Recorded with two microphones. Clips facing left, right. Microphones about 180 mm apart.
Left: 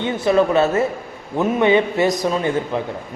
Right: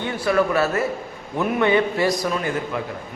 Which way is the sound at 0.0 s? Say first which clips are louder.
Left 4 dB; 20° left (ahead or behind).